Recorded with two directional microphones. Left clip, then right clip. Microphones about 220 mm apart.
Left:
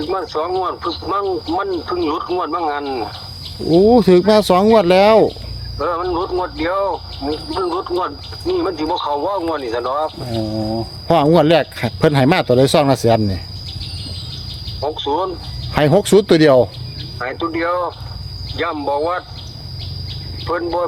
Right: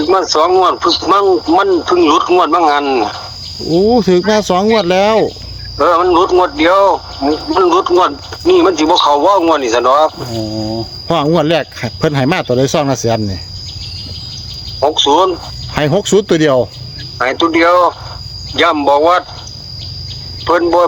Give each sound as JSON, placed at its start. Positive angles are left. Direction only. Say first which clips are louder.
{"t": 0.0, "sound": "speech", "louder": "right 10 dB", "side_deg": -45}
{"t": 3.8, "sound": "speech", "louder": "even", "side_deg": -5}
{"t": 5.7, "sound": "speech", "louder": "right 10 dB", "side_deg": -50}
{"t": 10.3, "sound": "chicken", "louder": "right 2 dB", "side_deg": -20}
{"t": 11.1, "sound": "speech", "louder": "even", "side_deg": -5}
{"t": 14.8, "sound": "speech", "louder": "right 10 dB", "side_deg": -45}
{"t": 15.7, "sound": "speech", "louder": "right 1 dB", "side_deg": -5}
{"t": 17.2, "sound": "speech", "louder": "right 10 dB", "side_deg": -45}
{"t": 20.4, "sound": "speech", "louder": "right 10 dB", "side_deg": -45}